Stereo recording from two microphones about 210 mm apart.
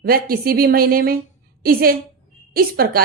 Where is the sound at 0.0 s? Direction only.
45° right (ahead or behind).